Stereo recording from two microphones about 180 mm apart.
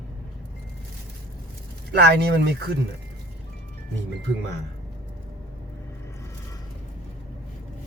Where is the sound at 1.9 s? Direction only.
65° right (ahead or behind).